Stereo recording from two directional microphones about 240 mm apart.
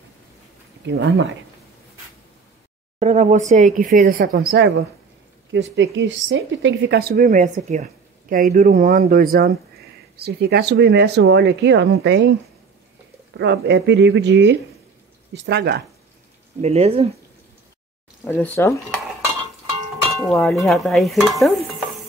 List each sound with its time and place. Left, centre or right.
0.8 s speech: right
3.0 s speech: right
13.4 s speech: right
16.6 s speech: right
18.2 s speech: centre
20.2 s stir: centre